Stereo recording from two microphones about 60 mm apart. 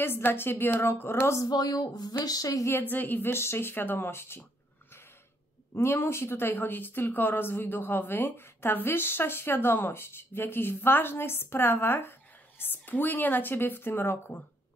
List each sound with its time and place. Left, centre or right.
0.0 s a woman's voice: left
1.4 s speech: left
2.7 s a woman's voice: left
5.8 s a woman's voice: left